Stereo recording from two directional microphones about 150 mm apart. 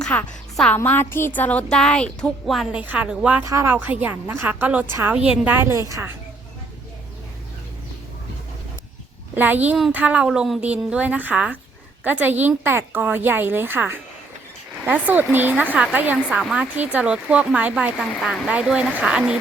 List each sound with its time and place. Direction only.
0.0 s a woman's voice: 5° left (ahead or behind); by 3.4 s 10° right (ahead or behind)
3.4 s a woman's voice: 20° right (ahead or behind)
9.3 s speech: 10° right (ahead or behind)